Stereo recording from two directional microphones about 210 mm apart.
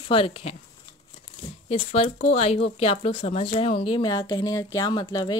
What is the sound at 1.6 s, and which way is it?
Speech, 30° left (ahead or behind).